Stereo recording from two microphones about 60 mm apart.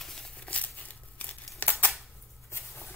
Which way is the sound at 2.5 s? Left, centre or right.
Left.